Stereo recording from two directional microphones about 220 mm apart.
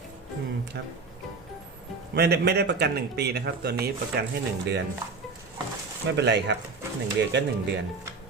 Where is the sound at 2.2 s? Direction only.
50° right (ahead or behind).